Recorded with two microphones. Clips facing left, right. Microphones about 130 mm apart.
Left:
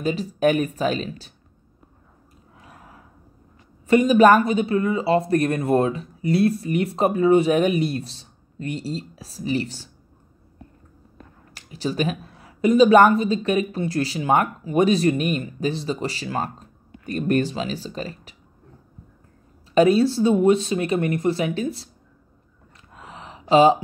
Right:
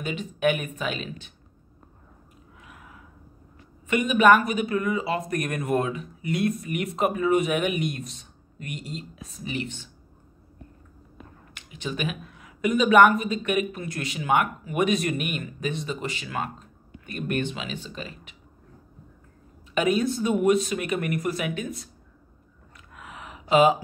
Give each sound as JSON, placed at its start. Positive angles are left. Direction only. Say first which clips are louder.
{"t": 0.0, "sound": "speech", "louder": "left 5 dB", "side_deg": 35}
{"t": 2.6, "sound": "a sound", "louder": "left 2 dB", "side_deg": 35}
{"t": 3.8, "sound": "speech", "louder": "left 5 dB", "side_deg": 35}
{"t": 11.5, "sound": "speech", "louder": "left 7 dB", "side_deg": 35}
{"t": 19.7, "sound": "speech", "louder": "left 7 dB", "side_deg": 35}
{"t": 22.9, "sound": "a sound", "louder": "left 2 dB", "side_deg": 30}